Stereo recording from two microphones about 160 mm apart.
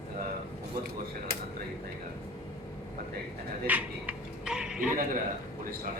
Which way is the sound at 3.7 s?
10° right (ahead or behind).